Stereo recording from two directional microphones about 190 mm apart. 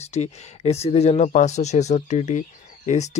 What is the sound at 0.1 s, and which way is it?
Speech, 35° left (ahead or behind).